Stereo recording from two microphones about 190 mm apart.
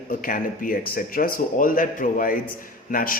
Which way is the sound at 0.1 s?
45° left (ahead or behind).